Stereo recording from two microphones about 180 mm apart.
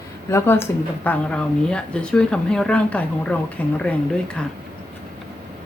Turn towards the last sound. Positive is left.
turn(degrees=5)  # may be behind; listen again after turning